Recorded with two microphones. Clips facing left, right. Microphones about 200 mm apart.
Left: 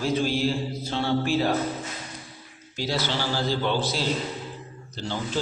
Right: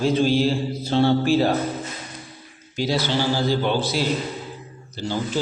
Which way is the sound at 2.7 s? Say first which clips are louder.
Right 5 dB; 15° right (ahead or behind).